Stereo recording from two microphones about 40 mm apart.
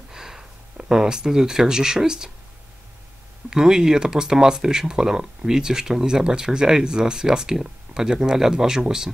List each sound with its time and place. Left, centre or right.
0.1 s speech: centre
3.4 s speech: centre